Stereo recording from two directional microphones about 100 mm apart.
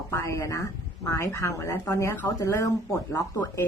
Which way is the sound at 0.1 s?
30° left (ahead or behind).